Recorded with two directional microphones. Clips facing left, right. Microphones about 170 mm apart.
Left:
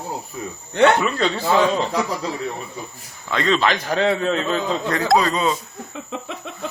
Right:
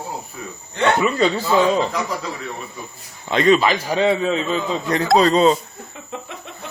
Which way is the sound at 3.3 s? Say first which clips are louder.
Right 6 dB; 20° right (ahead or behind).